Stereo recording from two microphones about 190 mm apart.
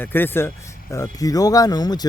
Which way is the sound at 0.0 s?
10° left (ahead or behind).